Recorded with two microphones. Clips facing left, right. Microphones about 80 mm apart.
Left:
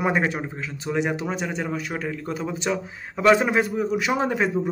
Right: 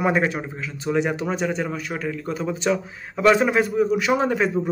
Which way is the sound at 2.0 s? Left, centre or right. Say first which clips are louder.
Right 2 dB; left.